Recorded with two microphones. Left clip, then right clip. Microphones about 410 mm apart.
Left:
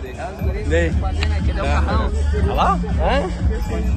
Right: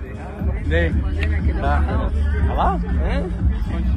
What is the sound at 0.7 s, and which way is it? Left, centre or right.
Speech, centre.